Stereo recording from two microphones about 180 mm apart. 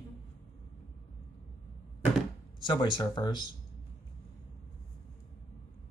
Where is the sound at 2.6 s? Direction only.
25° left (ahead or behind).